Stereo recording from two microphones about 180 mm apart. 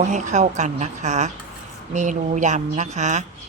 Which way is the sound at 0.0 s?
45° right (ahead or behind).